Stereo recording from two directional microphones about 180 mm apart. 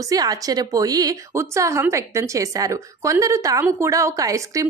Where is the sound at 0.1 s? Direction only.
20° right (ahead or behind).